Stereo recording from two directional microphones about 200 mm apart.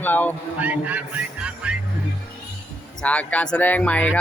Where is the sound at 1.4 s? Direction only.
5° right (ahead or behind).